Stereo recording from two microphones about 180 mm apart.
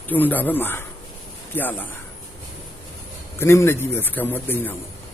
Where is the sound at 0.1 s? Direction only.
10° left (ahead or behind).